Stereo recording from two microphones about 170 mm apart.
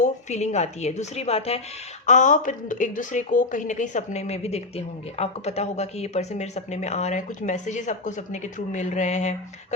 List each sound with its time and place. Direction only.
0.0 s speech: 45° left (ahead or behind)